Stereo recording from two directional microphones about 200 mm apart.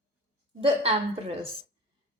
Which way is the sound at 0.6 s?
30° right (ahead or behind).